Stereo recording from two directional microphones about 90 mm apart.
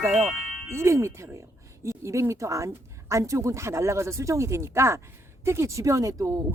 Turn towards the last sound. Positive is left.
turn(degrees=-35)  # may be behind; listen again after turning